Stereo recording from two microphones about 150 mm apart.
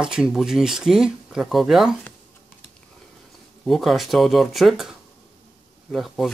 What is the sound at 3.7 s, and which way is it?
Speech, centre (ahead or behind).